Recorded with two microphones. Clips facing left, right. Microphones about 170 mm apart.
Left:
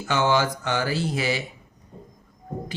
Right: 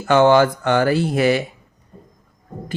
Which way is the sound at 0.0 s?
55° right (ahead or behind).